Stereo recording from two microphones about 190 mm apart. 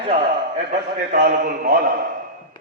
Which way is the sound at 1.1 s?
50° right (ahead or behind).